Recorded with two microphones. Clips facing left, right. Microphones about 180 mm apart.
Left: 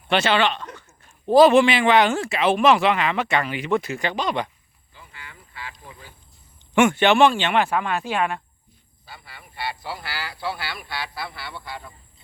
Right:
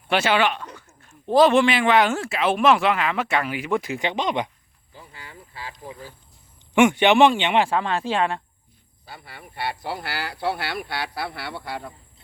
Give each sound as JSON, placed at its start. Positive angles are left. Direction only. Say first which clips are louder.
{"t": 0.1, "sound": "speech", "louder": "even", "side_deg": -10}
{"t": 1.0, "sound": "speech", "louder": "left 3 dB", "side_deg": 5}
{"t": 4.9, "sound": "a sound", "louder": "right 3 dB", "side_deg": -35}
{"t": 6.7, "sound": "speech", "louder": "right 1 dB", "side_deg": -15}
{"t": 9.0, "sound": "speech", "louder": "right 3 dB", "side_deg": -55}